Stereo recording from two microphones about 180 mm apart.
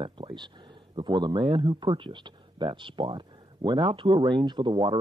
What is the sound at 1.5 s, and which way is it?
Speech, 25° right (ahead or behind).